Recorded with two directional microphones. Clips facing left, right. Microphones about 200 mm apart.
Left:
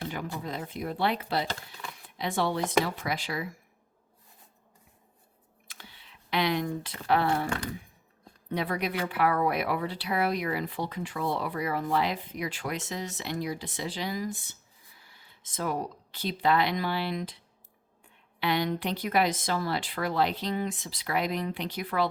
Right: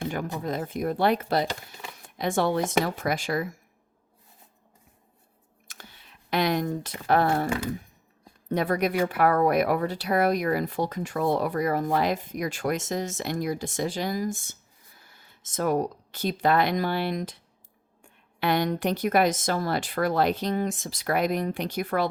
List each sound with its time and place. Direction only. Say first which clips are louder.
0.4 s a woman's voice: right 6 dB; 45° right (ahead or behind)
5.6 s a sound: right 2 dB; 45° right (ahead or behind)
7.1 s a woman's voice: right 3 dB; 45° right (ahead or behind)
18.3 s a woman's voice: right 3 dB; 45° right (ahead or behind)